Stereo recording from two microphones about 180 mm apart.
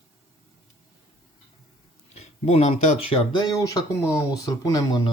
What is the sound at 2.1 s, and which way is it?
Speech, 35° left (ahead or behind).